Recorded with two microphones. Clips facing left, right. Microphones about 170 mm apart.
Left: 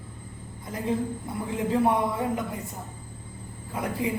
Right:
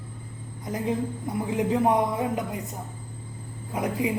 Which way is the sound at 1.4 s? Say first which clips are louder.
Right 1 dB; 20° right (ahead or behind).